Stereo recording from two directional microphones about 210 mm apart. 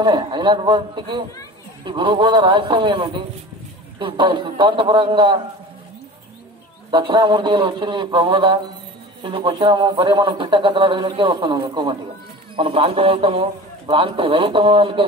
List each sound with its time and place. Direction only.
0.0 s speech: 20° right (ahead or behind)
6.9 s speech: 20° right (ahead or behind)